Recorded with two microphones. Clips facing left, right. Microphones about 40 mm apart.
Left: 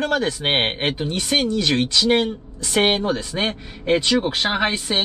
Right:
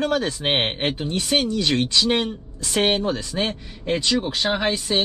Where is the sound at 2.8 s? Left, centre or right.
Centre.